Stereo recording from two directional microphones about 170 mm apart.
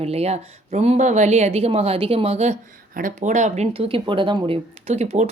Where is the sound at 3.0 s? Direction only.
50° right (ahead or behind).